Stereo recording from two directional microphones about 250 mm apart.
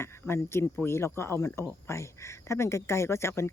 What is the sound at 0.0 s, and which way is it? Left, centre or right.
Speech, centre.